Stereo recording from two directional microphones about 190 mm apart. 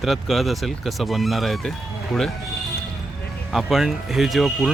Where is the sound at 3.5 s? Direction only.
Centre (ahead or behind).